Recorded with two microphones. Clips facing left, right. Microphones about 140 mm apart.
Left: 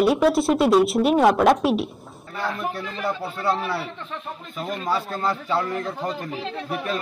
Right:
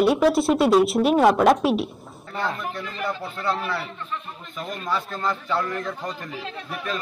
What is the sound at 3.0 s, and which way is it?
Speech, 20° left (ahead or behind).